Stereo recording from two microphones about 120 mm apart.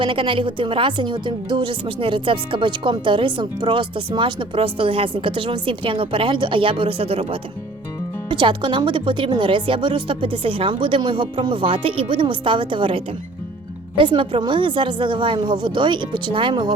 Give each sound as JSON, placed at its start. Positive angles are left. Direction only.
{"t": 0.0, "sound": "a woman's voice", "side_deg": -45}
{"t": 8.3, "sound": "a woman's voice", "side_deg": -45}
{"t": 14.0, "sound": "a woman's voice", "side_deg": -45}